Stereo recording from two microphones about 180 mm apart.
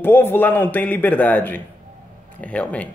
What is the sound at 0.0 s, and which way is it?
Speech, 10° left (ahead or behind).